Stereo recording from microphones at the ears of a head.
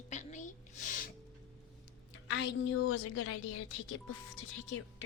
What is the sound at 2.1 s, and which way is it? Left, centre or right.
A woman's voice, left.